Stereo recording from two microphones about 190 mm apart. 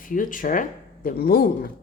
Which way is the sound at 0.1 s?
45° left (ahead or behind).